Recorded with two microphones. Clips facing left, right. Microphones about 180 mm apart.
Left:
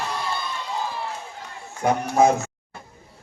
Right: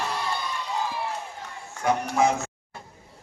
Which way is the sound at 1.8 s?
45° left (ahead or behind).